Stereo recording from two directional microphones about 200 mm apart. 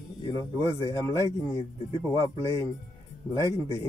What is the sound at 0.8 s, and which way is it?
Speech, 15° left (ahead or behind).